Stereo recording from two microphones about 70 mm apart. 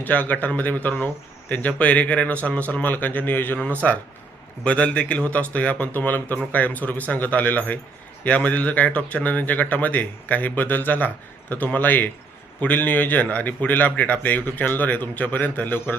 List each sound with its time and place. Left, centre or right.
0.0 s speech: left